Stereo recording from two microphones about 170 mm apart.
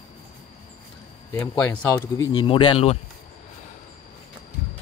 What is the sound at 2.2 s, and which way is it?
Speech, 25° left (ahead or behind).